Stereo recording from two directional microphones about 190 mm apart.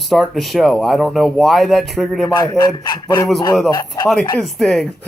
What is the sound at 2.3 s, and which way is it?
Speech, 20° left (ahead or behind).